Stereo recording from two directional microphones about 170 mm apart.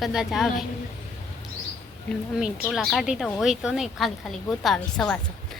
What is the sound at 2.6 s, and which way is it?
A woman's voice, centre (ahead or behind).